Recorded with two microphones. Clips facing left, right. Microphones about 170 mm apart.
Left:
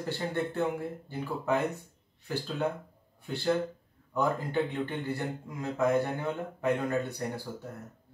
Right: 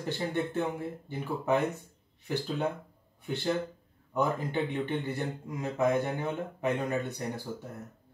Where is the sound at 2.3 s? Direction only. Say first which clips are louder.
Even; 20° right (ahead or behind).